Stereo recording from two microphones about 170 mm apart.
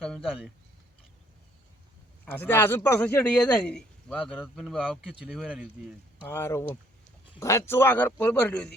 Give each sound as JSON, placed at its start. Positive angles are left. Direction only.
{"t": 0.0, "sound": "speech", "side_deg": 0}
{"t": 2.2, "sound": "speech", "side_deg": 10}
{"t": 6.2, "sound": "a man's voice", "side_deg": 15}